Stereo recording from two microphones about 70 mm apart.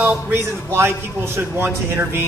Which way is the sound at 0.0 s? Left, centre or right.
Right.